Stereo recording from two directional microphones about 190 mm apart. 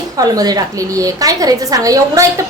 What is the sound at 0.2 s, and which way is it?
A woman's voice, 20° right (ahead or behind).